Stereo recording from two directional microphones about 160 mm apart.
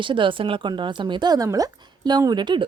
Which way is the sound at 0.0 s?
30° right (ahead or behind).